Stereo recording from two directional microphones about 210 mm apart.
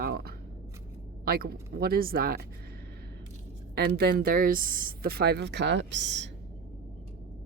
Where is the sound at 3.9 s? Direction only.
50° right (ahead or behind).